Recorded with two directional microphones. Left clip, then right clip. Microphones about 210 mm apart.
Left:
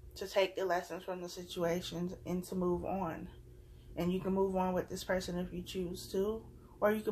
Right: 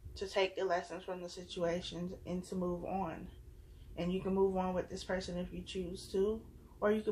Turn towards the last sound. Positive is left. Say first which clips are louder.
# left 1 dB
turn(degrees=35)  # may be behind; listen again after turning